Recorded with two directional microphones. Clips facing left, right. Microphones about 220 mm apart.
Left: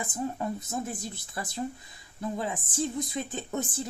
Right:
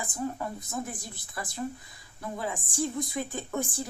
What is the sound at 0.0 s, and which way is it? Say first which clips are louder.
A woman's voice: left 1 dB; 20° left (ahead or behind).